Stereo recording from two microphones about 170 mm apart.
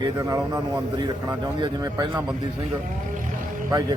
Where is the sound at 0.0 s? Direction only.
20° right (ahead or behind).